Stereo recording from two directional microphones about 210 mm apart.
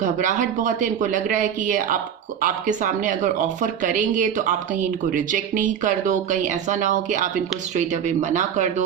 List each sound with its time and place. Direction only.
0.0 s speech: 35° right (ahead or behind)